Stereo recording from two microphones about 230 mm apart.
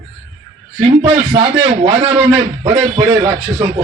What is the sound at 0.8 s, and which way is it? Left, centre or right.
A man's voice, right.